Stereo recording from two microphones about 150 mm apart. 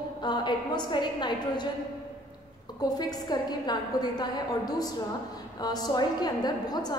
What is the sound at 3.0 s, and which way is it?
A woman's voice, 25° left (ahead or behind).